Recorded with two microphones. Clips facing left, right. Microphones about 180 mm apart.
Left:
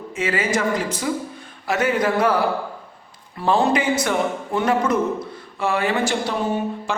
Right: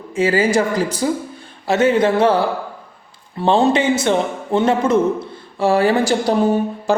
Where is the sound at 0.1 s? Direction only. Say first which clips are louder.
Right 7 dB; 30° right (ahead or behind).